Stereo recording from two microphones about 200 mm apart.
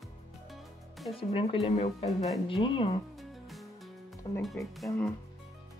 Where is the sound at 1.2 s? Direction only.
25° left (ahead or behind).